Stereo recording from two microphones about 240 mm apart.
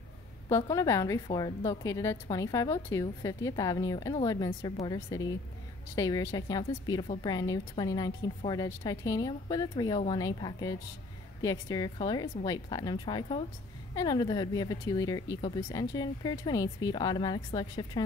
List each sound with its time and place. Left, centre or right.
0.5 s a woman's voice: centre